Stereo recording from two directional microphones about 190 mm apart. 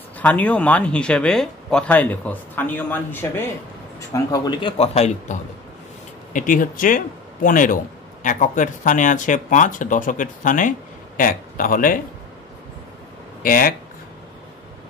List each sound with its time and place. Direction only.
0.2 s a man's voice: 10° left (ahead or behind); by 12.0 s 45° left (ahead or behind)
13.4 s speech: 50° left (ahead or behind)